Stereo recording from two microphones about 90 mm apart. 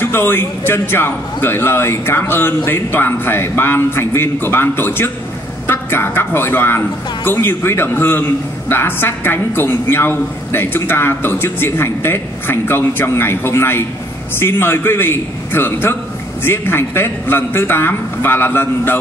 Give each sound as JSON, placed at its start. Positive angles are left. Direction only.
{"t": 0.0, "sound": "a man's voice", "side_deg": 25}